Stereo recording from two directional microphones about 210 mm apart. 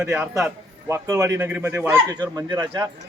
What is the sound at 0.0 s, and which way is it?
Speech, 5° right (ahead or behind).